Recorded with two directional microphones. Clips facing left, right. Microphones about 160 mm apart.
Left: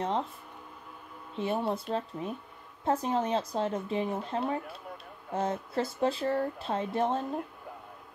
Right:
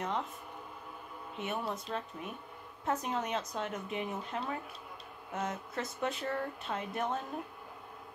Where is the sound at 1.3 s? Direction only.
30° left (ahead or behind).